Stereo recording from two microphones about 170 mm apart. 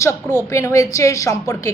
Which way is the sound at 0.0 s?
15° left (ahead or behind).